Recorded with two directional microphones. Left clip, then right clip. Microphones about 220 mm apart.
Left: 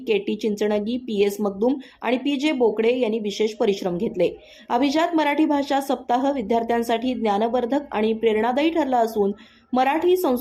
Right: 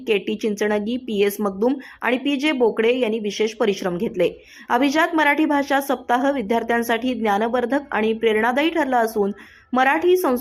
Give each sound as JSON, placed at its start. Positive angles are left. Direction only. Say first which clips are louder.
{"t": 0.1, "sound": "a woman's voice", "louder": "right 1 dB", "side_deg": -15}